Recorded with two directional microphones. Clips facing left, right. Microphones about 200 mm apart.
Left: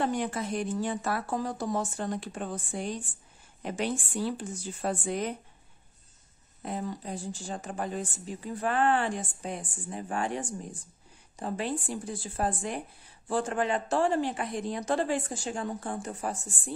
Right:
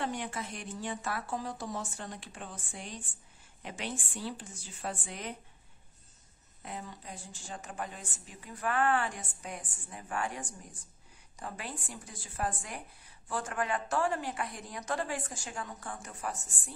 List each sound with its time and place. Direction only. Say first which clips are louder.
0.0 s speech: left 7 dB; 40° left (ahead or behind)
6.6 s speech: left 9 dB; 40° left (ahead or behind)